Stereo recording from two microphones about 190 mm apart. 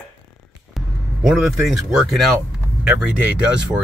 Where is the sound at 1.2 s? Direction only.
Centre (ahead or behind).